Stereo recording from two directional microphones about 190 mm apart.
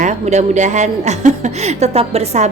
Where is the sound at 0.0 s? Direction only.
35° right (ahead or behind).